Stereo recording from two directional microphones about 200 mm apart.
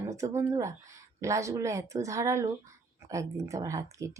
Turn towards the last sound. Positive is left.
turn(degrees=-15)  # may be behind; listen again after turning